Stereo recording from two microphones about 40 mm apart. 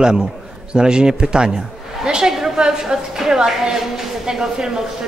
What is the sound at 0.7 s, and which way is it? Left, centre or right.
Speech, centre.